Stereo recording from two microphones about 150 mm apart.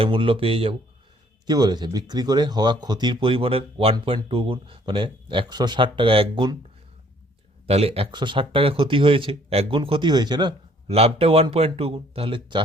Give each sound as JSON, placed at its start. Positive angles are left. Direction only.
{"t": 0.0, "sound": "speech", "side_deg": -35}
{"t": 1.5, "sound": "speech", "side_deg": -30}
{"t": 7.7, "sound": "speech", "side_deg": -40}
{"t": 10.8, "sound": "speech", "side_deg": -40}